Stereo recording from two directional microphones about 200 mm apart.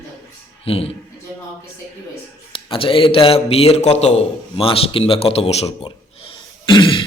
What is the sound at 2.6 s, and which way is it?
A man's voice, 25° left (ahead or behind).